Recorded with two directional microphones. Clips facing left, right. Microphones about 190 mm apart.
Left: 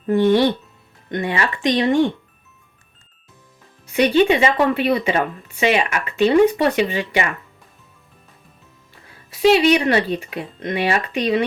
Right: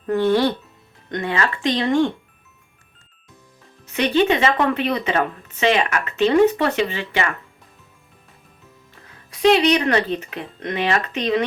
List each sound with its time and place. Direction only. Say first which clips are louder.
0.1 s a woman's voice: left 3 dB; 15° left (ahead or behind)
3.9 s a woman's voice: left 3 dB; 10° left (ahead or behind)
9.3 s a woman's voice: left 2 dB; 5° left (ahead or behind)